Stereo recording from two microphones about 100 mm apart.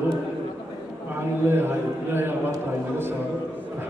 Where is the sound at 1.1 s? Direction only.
20° right (ahead or behind).